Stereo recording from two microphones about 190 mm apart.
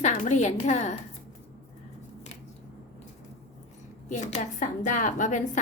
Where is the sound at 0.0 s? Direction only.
40° left (ahead or behind).